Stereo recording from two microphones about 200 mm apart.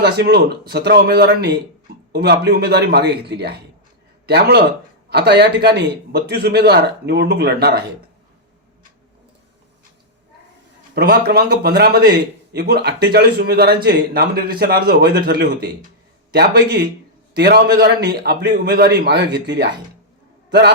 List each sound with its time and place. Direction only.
0.0 s a man's voice: 55° right (ahead or behind)
10.9 s a man's voice: 50° right (ahead or behind)